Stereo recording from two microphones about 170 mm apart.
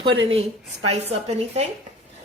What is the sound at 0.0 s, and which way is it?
Speech, 30° right (ahead or behind).